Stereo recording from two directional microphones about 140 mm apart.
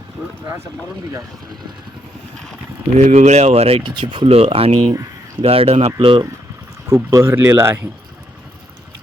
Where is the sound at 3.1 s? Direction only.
50° right (ahead or behind).